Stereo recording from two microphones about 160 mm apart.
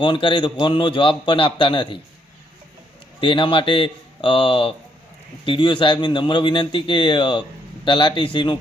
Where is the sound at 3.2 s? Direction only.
30° left (ahead or behind).